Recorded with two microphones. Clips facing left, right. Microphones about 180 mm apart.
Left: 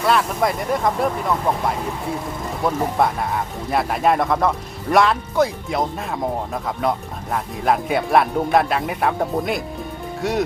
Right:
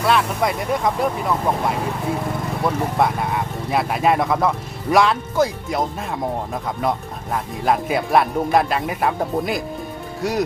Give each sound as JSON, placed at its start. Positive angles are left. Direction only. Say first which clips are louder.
{"t": 0.0, "sound": "speech", "louder": "even", "side_deg": 0}
{"t": 2.6, "sound": "speech", "louder": "left 1 dB", "side_deg": 0}
{"t": 7.3, "sound": "speech", "louder": "even", "side_deg": 0}